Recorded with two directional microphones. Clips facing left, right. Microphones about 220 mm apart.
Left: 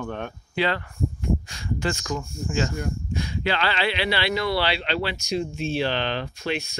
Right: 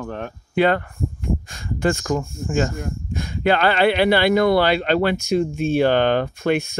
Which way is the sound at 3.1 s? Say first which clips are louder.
Right 8 dB; 50° right (ahead or behind).